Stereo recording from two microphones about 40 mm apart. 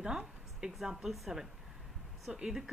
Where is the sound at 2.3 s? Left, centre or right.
Centre.